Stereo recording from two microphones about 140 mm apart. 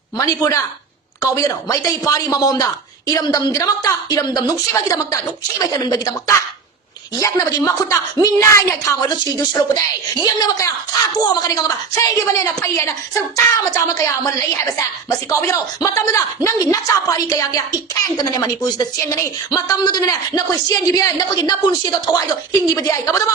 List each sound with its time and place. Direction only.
0.2 s a woman's voice: 25° left (ahead or behind)